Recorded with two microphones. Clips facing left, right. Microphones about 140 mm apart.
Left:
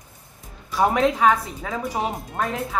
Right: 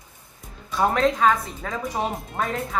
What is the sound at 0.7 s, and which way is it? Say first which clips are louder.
A woman's voice: left 1 dB; 10° left (ahead or behind).